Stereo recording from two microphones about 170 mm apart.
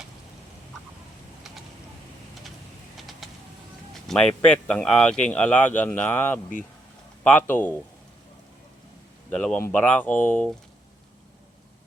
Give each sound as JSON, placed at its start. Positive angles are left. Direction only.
{"t": 3.2, "sound": "bird", "side_deg": 0}
{"t": 4.0, "sound": "speech", "side_deg": 5}
{"t": 9.3, "sound": "speech", "side_deg": 5}